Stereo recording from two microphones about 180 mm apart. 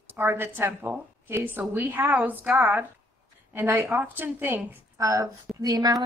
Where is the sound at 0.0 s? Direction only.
10° right (ahead or behind).